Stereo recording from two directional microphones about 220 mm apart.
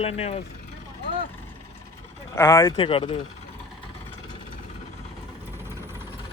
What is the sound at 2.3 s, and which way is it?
Speech, 15° left (ahead or behind).